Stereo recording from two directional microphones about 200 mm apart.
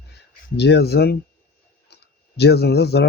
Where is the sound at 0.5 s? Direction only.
55° left (ahead or behind).